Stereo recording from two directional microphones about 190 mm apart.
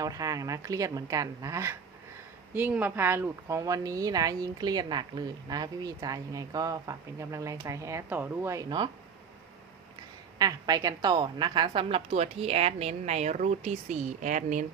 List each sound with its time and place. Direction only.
0.0 s speech: 20° right (ahead or behind)
10.3 s a woman's voice: 20° right (ahead or behind); by 14.7 s 40° right (ahead or behind)